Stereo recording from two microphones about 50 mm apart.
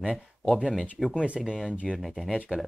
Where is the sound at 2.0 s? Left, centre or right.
Centre.